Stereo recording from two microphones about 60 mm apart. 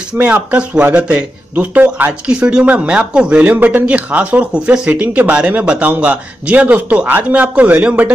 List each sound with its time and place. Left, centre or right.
0.2 s speech: right
2.2 s speech: centre